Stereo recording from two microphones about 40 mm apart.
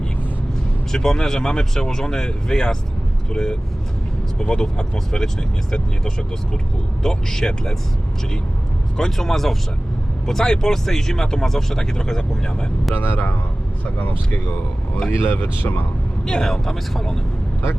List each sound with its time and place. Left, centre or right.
0.9 s speech: centre
9.0 s speech: centre
12.9 s speech: left
15.2 s speech: left
16.2 s speech: centre